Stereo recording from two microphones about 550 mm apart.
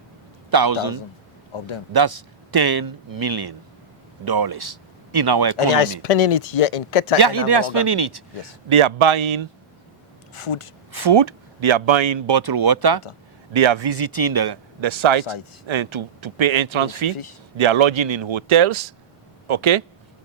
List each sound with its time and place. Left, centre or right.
0.5 s a man's voice: right
1.5 s speech: left
1.9 s a man's voice: right
5.5 s speech: left
7.2 s speech: right
8.7 s speech: right
10.3 s speech: left
10.9 s speech: right
13.5 s speech: right